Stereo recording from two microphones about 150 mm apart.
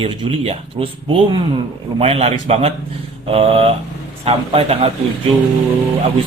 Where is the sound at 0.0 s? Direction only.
35° right (ahead or behind).